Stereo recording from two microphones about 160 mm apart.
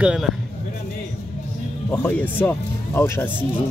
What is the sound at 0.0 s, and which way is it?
Speech, 5° right (ahead or behind).